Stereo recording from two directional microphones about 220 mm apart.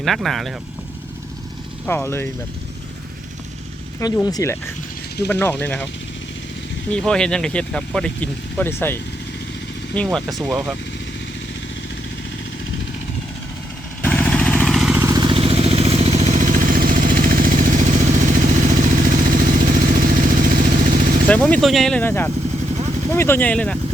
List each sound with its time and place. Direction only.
0.0 s speech: centre (ahead or behind)
1.9 s speech: 10° left (ahead or behind)
4.0 s speech: 15° left (ahead or behind)
6.9 s speech: 5° left (ahead or behind)
14.0 s vehicle: 5° left (ahead or behind); by 21.2 s 40° right (ahead or behind)
21.2 s speech: 5° left (ahead or behind)